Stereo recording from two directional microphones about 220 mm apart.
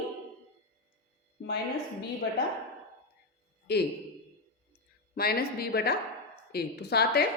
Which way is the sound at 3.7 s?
50° left (ahead or behind).